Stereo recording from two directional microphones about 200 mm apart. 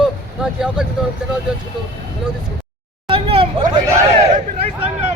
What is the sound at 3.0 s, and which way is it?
Hubbub, 25° right (ahead or behind).